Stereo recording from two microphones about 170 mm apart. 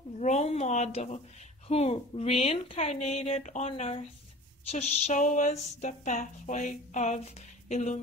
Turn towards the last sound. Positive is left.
turn(degrees=45)  # may be behind; listen again after turning